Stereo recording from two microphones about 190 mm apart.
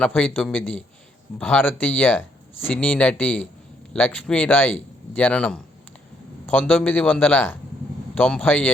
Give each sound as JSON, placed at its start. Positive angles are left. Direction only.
{"t": 0.0, "sound": "speech", "side_deg": 5}